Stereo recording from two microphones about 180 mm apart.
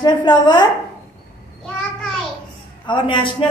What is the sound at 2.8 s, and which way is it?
Speech, 25° left (ahead or behind).